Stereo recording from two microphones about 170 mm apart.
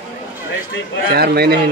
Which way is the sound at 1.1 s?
65° right (ahead or behind).